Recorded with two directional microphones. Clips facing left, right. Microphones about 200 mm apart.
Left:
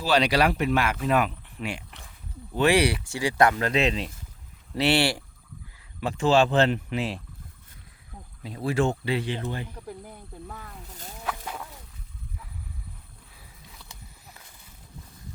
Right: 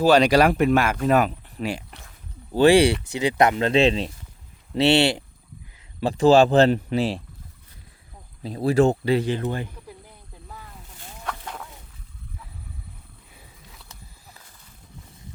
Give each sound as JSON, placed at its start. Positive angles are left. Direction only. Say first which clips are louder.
{"t": 0.0, "sound": "speech", "louder": "right 6 dB", "side_deg": -45}
{"t": 6.0, "sound": "speech", "louder": "right 6 dB", "side_deg": -35}
{"t": 8.4, "sound": "speech", "louder": "right 6 dB", "side_deg": -35}
{"t": 11.2, "sound": "chicken", "louder": "even", "side_deg": 5}